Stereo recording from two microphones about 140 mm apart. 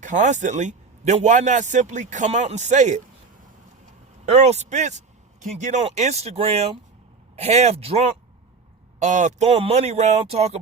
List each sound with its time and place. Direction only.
0.0 s a man's voice: 60° right (ahead or behind)
4.4 s a man's voice: 55° right (ahead or behind)
9.0 s speech: 60° right (ahead or behind)